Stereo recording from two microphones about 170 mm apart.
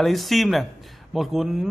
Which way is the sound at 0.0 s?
Centre (ahead or behind).